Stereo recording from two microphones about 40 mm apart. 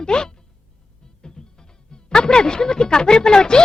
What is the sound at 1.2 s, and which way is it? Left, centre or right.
Music, centre.